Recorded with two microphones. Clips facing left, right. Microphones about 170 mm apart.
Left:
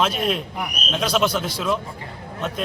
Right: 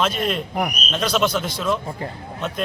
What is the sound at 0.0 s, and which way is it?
A man's voice, 5° left (ahead or behind).